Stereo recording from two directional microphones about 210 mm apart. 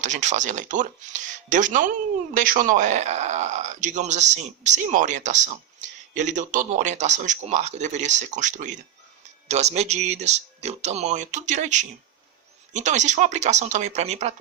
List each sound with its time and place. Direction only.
0.0 s speech: 35° right (ahead or behind)